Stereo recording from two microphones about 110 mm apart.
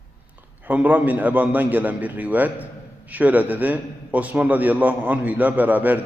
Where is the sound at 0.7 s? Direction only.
15° right (ahead or behind).